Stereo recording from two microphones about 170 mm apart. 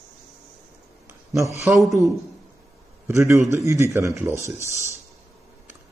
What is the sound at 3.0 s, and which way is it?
Speech, 15° right (ahead or behind).